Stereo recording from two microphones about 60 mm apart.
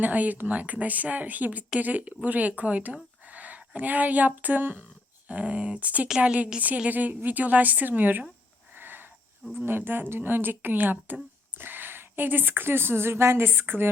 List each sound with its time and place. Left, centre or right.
0.0 s speech: right
8.7 s a sound: right
9.6 s speech: right